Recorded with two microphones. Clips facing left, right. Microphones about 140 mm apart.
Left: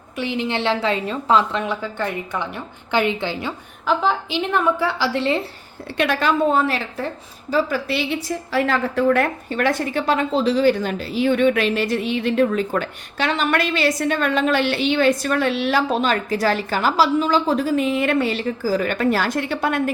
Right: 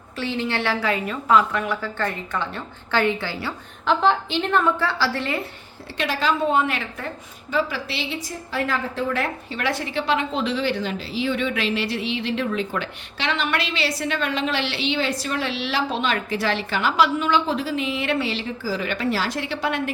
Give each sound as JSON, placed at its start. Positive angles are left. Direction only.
{"t": 0.2, "sound": "a woman's voice", "side_deg": 15}
{"t": 3.8, "sound": "a woman's voice", "side_deg": 5}
{"t": 6.0, "sound": "a woman's voice", "side_deg": 55}
{"t": 6.5, "sound": "a woman's voice", "side_deg": 35}
{"t": 7.5, "sound": "a woman's voice", "side_deg": 50}
{"t": 8.5, "sound": "a woman's voice", "side_deg": 90}
{"t": 9.1, "sound": "a woman's voice", "side_deg": 50}